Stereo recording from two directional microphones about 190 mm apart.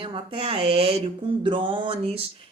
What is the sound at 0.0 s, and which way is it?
Speech, 30° right (ahead or behind).